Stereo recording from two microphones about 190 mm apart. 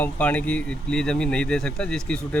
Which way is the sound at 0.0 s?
5° left (ahead or behind).